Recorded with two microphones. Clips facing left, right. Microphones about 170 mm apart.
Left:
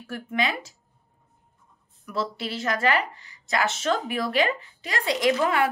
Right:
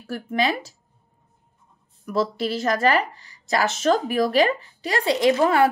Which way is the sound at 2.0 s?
40° right (ahead or behind).